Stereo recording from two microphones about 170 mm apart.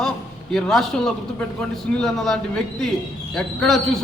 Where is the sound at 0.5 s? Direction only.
Centre (ahead or behind).